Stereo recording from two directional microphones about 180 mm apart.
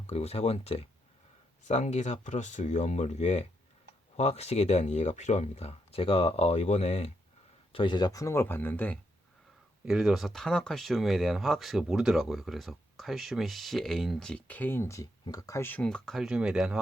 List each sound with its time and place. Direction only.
0.1 s speech: 35° left (ahead or behind); by 9.0 s 10° left (ahead or behind)
9.8 s speech: 5° right (ahead or behind)